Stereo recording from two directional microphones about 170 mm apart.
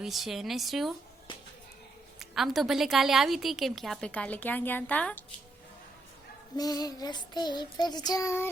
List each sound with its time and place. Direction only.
0.0 s a woman's voice: centre (ahead or behind)
2.1 s a woman's voice: centre (ahead or behind)
6.6 s child singing: 20° left (ahead or behind)